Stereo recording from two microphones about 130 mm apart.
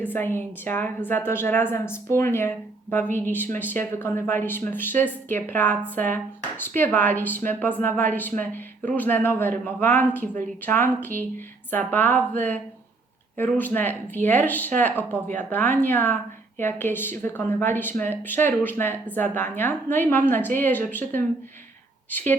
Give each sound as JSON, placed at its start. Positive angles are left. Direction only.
{"t": 0.0, "sound": "a woman's voice", "side_deg": 15}